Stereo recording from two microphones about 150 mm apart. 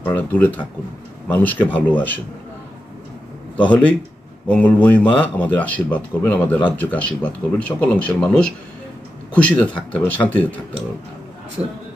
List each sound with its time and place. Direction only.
0.0 s speech: 10° left (ahead or behind)
3.5 s speech: 10° left (ahead or behind)